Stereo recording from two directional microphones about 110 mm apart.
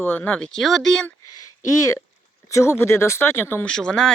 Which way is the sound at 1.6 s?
30° left (ahead or behind).